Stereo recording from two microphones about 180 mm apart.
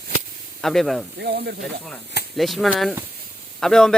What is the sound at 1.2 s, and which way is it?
Speech, 65° right (ahead or behind).